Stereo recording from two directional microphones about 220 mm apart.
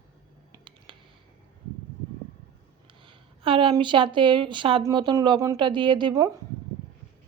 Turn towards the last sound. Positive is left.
turn(degrees=-20)  # may be behind; listen again after turning